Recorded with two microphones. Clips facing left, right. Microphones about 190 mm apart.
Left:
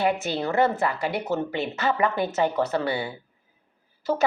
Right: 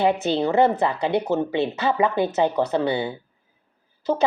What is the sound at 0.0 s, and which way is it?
Speech, 20° right (ahead or behind).